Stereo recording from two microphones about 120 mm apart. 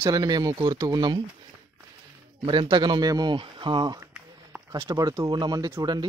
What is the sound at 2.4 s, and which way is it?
Speech, 40° right (ahead or behind).